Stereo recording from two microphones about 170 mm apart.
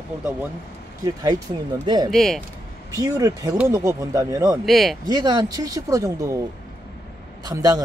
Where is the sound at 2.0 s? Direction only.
Centre (ahead or behind).